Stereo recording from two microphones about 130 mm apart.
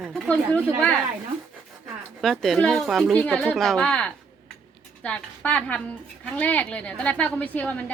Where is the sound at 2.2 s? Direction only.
Centre (ahead or behind).